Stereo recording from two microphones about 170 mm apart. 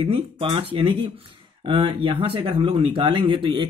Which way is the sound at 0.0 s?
30° right (ahead or behind).